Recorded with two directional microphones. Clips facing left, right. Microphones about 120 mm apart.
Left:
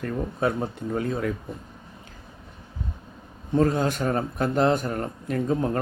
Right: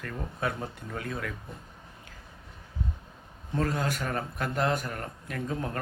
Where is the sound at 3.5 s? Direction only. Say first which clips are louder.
Left 8 dB; 25° left (ahead or behind).